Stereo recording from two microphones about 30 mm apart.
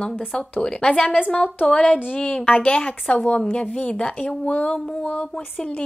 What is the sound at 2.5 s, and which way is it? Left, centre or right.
Speech, left.